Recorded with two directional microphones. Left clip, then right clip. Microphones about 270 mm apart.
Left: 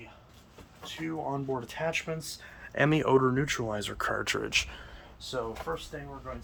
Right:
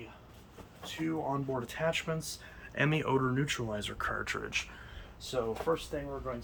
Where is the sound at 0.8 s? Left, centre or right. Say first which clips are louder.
Even; centre; by 4.9 s left.